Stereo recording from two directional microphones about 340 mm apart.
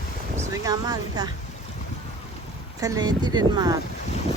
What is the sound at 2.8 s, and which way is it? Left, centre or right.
Speech, centre.